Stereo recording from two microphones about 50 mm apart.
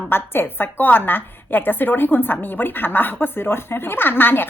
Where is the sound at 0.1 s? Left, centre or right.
Left.